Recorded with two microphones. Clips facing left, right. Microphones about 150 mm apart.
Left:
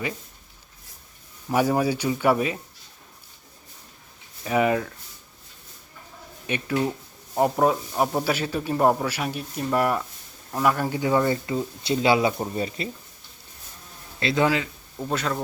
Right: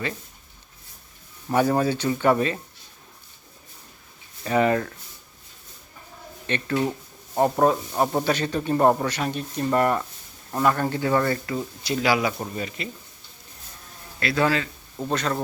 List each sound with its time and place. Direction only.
1.5 s speech: 10° left (ahead or behind)
4.4 s speech: 5° left (ahead or behind)
6.5 s speech: 10° left (ahead or behind); by 12.9 s 30° left (ahead or behind)
14.2 s speech: 20° left (ahead or behind)
14.9 s speech: 5° left (ahead or behind)